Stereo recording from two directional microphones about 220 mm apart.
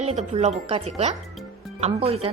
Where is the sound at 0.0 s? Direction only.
30° right (ahead or behind).